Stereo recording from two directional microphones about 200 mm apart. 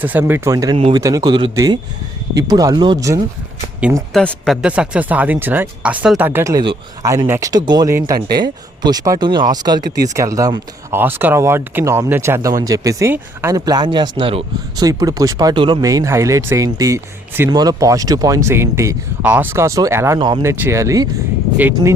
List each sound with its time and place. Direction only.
0.0 s speech: 10° right (ahead or behind)
0.8 s a man's voice: 30° right (ahead or behind)
4.1 s speech: 5° left (ahead or behind); by 21.1 s 15° right (ahead or behind)